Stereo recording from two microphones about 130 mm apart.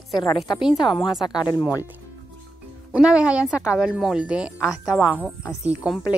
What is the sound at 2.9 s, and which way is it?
Speech, 5° right (ahead or behind).